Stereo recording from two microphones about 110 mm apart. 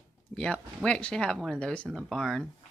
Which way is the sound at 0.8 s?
10° left (ahead or behind).